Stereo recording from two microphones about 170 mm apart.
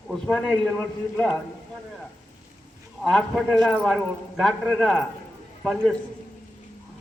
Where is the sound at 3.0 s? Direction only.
Centre (ahead or behind).